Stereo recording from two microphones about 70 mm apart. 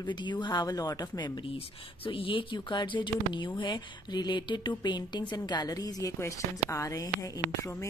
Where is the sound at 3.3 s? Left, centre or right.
Left.